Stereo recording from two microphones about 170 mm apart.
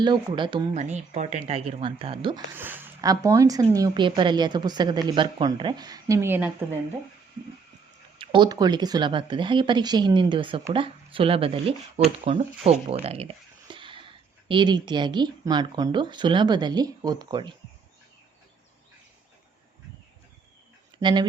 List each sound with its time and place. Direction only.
0.0 s a woman's voice: 25° right (ahead or behind)
0.7 s speech: 45° right (ahead or behind)
2.6 s a woman's voice: 10° right (ahead or behind)
8.2 s a woman's voice: 25° right (ahead or behind)
21.0 s a woman's voice: 30° right (ahead or behind)